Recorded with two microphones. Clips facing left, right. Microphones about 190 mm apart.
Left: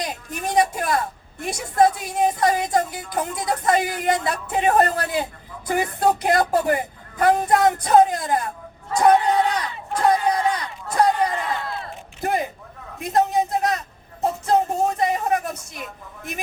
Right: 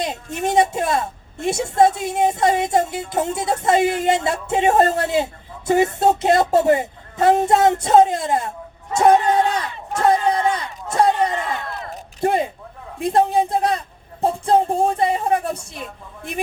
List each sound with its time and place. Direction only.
0.0 s a woman's voice: 25° right (ahead or behind)